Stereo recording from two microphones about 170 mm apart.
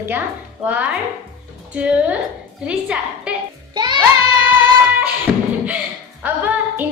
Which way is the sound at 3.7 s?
25° right (ahead or behind).